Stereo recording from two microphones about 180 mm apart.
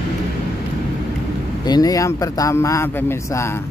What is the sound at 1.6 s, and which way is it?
Speech, 20° left (ahead or behind).